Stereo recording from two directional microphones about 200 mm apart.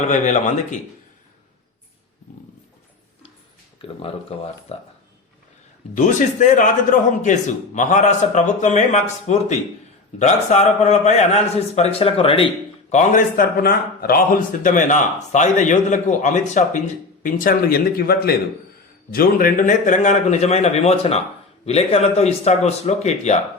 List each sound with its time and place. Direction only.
0.0 s a man's voice: 35° left (ahead or behind)
3.8 s a man's voice: 30° left (ahead or behind)
5.9 s a man's voice: 40° left (ahead or behind)
12.9 s a man's voice: 40° left (ahead or behind)